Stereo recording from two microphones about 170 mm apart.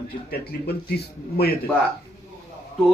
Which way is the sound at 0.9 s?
70° left (ahead or behind).